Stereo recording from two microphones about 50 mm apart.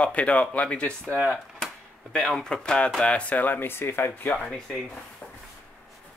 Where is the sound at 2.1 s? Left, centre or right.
Centre; by 4.3 s left.